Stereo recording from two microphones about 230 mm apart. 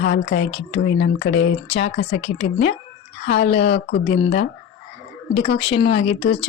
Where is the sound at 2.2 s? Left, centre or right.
Left.